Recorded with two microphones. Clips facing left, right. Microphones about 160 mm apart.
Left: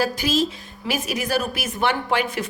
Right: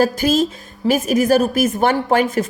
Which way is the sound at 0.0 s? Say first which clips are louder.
Right 6 dB; 50° right (ahead or behind).